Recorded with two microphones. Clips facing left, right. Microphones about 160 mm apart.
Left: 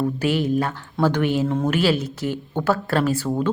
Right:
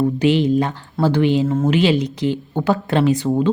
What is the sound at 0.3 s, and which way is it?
Speech, 10° left (ahead or behind).